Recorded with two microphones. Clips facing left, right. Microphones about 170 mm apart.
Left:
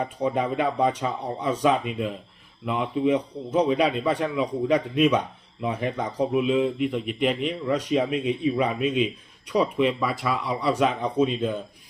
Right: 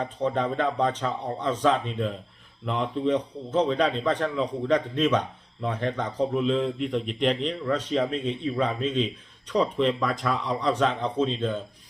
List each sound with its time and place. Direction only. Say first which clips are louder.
0.0 s a man's voice: left 1 dB; 10° left (ahead or behind)